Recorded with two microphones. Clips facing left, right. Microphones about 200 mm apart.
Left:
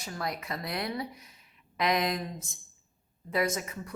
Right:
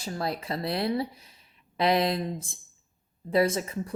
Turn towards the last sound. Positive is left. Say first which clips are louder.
# right 5 dB
turn(degrees=-30)  # may be behind; listen again after turning